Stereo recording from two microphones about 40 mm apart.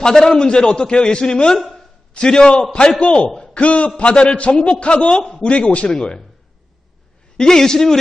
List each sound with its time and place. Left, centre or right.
0.0 s a man's voice: centre
1.7 s a sound: left
3.0 s a man's voice: left
3.2 s a sound: centre
3.5 s a man's voice: left
7.3 s a man's voice: centre